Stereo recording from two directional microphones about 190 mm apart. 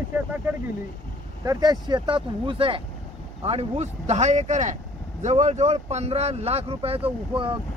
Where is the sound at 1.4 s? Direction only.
20° right (ahead or behind).